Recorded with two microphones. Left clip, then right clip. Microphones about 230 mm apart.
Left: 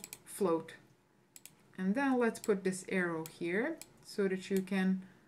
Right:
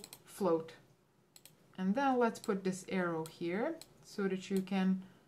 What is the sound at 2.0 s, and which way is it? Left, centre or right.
Speech, centre.